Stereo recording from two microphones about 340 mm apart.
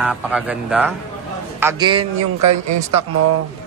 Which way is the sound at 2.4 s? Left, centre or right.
Right.